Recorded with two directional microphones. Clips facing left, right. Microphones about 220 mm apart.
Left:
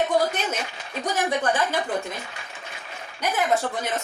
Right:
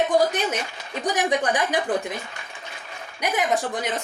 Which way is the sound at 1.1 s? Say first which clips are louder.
Right 1 dB; 15° right (ahead or behind).